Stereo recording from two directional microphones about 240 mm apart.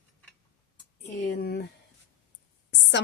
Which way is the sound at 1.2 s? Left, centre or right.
Left.